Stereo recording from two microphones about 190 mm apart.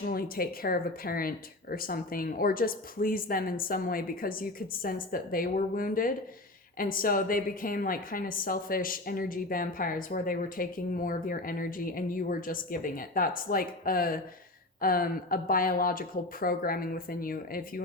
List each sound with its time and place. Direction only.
0.0 s a woman's voice: 50° left (ahead or behind)